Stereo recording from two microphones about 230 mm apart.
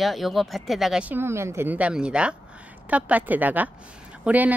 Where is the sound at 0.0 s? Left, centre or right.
Centre.